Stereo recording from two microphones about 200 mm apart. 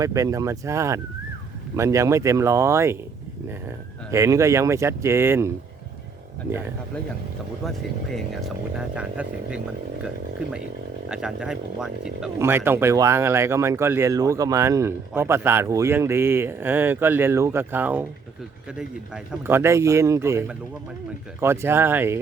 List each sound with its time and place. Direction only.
0.0 s speech: 15° right (ahead or behind)
4.1 s speech: 15° right (ahead or behind)
7.6 s speech: centre (ahead or behind)
11.1 s speech: 5° right (ahead or behind)